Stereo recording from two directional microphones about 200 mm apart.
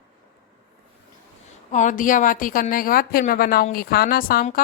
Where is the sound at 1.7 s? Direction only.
40° left (ahead or behind).